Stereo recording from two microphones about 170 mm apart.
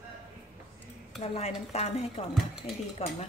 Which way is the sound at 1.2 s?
35° left (ahead or behind).